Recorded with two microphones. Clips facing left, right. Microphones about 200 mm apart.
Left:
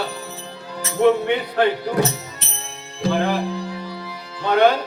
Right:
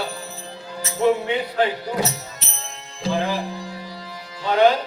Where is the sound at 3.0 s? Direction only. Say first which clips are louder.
Left 3 dB; 60° left (ahead or behind).